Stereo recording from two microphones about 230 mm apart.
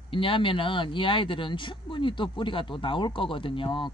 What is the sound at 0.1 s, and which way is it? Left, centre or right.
Speech, left.